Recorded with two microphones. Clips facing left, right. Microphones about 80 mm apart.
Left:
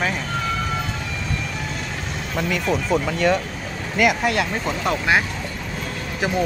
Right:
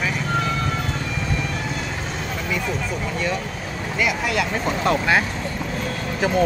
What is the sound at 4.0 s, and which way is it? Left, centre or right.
Speech, left.